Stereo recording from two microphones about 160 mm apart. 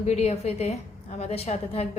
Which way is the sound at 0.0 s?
45° left (ahead or behind).